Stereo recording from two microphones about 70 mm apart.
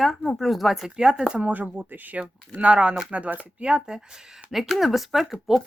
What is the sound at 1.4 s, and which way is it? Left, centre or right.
Speech, right.